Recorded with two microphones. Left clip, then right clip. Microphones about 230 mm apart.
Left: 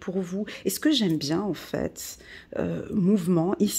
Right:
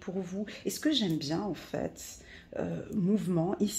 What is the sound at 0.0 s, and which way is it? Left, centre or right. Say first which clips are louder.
Speech: left 7 dB; left.